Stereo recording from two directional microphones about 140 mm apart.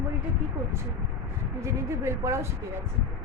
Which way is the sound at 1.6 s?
20° right (ahead or behind).